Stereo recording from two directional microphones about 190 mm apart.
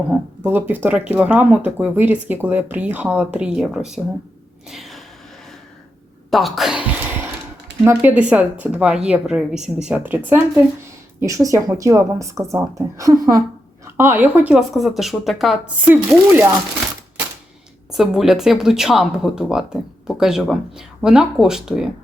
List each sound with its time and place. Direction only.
0.1 s speech: 10° right (ahead or behind)
4.7 s a sound: centre (ahead or behind)
6.3 s speech: centre (ahead or behind)
17.9 s speech: centre (ahead or behind)